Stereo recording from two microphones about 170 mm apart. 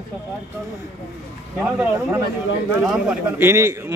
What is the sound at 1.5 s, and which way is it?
A man's voice, 10° right (ahead or behind).